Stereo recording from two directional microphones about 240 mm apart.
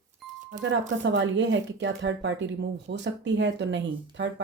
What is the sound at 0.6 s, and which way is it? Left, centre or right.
Speech, right.